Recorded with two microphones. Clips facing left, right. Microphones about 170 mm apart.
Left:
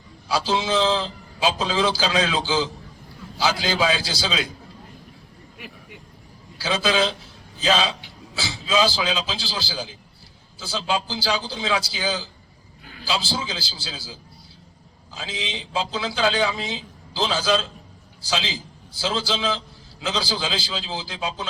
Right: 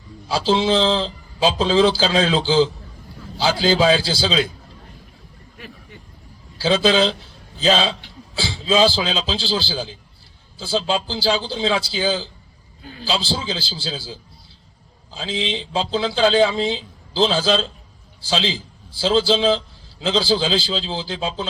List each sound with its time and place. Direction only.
0.3 s a man's voice: 30° right (ahead or behind)
6.6 s a man's voice: 30° right (ahead or behind)